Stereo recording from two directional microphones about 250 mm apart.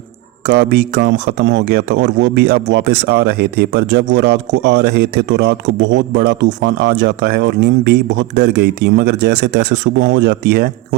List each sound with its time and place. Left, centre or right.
0.4 s speech: right